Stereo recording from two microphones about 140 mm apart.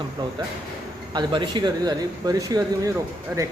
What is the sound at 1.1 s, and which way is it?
Speech, 35° right (ahead or behind).